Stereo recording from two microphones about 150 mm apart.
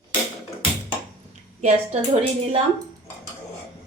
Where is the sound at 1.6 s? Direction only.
45° right (ahead or behind).